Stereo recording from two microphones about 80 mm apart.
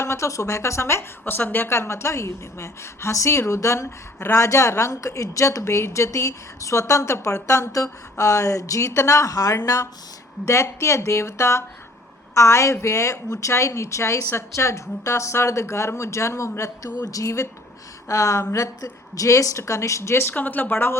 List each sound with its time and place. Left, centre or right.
0.0 s a woman's voice: left
20.3 s speech: left